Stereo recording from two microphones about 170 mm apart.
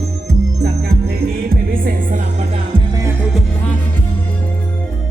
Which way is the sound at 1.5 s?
55° right (ahead or behind).